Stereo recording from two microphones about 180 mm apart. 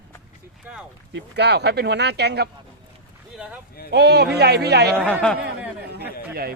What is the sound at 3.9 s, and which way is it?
A man's voice, 65° right (ahead or behind).